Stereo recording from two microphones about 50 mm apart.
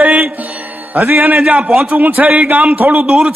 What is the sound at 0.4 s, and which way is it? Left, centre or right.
Music, right.